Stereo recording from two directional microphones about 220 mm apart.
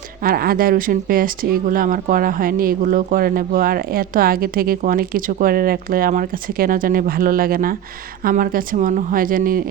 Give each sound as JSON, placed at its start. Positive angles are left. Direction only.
{"t": 0.3, "sound": "speech", "side_deg": -40}